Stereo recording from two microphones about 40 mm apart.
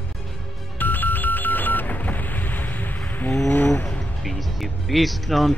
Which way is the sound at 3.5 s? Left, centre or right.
Left.